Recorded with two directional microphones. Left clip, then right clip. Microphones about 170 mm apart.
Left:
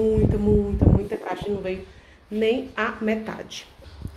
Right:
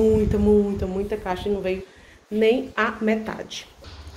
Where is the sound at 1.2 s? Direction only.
10° right (ahead or behind).